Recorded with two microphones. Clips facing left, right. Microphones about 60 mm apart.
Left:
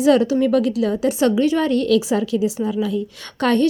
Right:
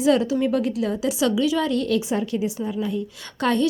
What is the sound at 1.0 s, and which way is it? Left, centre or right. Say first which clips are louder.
A woman's voice: left 4 dB; left.